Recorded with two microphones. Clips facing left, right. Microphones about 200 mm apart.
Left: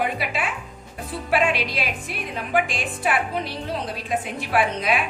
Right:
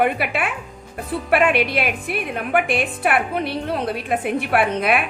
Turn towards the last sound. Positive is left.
turn(degrees=-60)  # may be behind; listen again after turning